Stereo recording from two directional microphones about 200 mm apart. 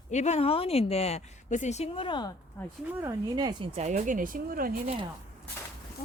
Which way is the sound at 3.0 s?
20° right (ahead or behind).